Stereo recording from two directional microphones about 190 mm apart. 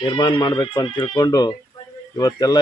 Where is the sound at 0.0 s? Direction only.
25° left (ahead or behind).